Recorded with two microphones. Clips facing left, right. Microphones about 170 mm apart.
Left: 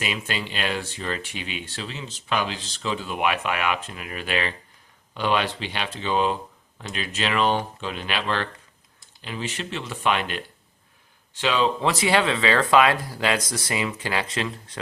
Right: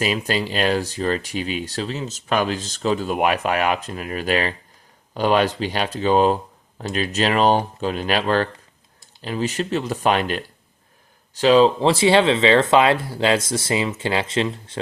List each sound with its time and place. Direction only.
0.0 s speech: 35° right (ahead or behind)